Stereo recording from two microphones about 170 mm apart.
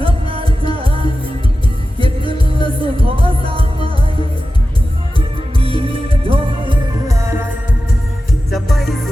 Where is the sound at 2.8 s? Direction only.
30° right (ahead or behind).